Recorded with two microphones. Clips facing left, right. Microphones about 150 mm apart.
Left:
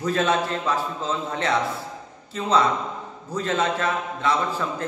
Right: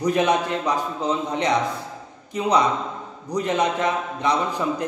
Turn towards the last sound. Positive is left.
turn(degrees=-15)  # may be behind; listen again after turning